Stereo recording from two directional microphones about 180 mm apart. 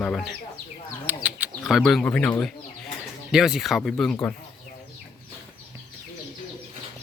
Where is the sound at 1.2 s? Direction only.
5° right (ahead or behind).